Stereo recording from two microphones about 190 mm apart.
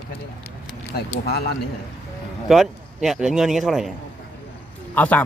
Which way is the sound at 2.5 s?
Centre (ahead or behind).